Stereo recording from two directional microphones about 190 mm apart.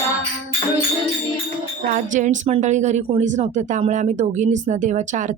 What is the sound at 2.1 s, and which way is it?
Speech, 40° right (ahead or behind).